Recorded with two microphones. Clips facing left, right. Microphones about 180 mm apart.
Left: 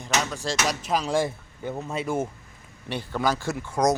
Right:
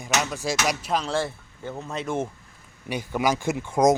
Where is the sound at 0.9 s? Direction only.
10° left (ahead or behind).